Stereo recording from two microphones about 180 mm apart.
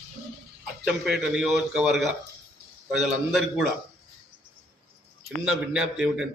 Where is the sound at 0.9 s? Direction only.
5° right (ahead or behind).